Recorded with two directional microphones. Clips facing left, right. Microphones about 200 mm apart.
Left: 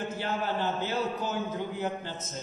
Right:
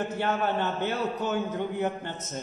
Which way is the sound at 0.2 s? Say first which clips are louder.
Right 4 dB; 65° right (ahead or behind).